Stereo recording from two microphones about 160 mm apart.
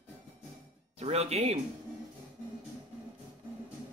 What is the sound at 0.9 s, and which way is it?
Speech, 40° right (ahead or behind).